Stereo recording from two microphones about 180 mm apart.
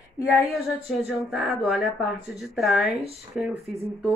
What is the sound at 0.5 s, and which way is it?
Speech, centre (ahead or behind).